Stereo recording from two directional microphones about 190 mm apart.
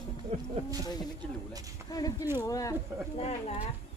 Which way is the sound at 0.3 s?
35° right (ahead or behind).